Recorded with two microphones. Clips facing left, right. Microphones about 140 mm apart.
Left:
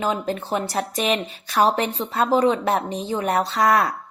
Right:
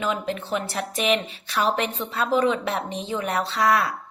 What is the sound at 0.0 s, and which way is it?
Speech, 35° left (ahead or behind).